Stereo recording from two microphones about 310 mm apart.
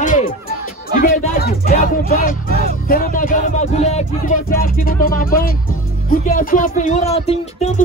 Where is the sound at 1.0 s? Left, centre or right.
Left.